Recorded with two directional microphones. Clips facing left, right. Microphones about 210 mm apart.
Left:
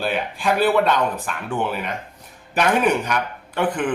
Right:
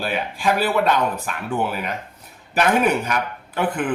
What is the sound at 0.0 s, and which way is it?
Speech, 5° right (ahead or behind).